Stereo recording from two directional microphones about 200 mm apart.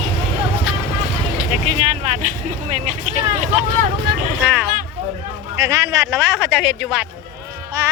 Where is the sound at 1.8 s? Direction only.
35° right (ahead or behind).